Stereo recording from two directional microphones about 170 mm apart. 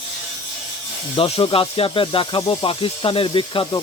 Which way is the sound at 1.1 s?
35° left (ahead or behind).